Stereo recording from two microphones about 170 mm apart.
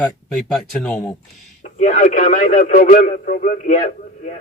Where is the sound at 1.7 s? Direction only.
45° left (ahead or behind).